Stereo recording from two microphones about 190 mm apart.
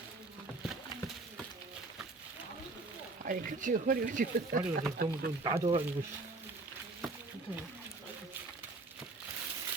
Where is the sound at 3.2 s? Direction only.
45° right (ahead or behind).